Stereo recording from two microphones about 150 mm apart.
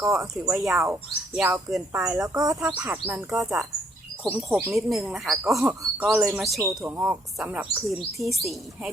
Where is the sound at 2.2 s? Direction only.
25° right (ahead or behind).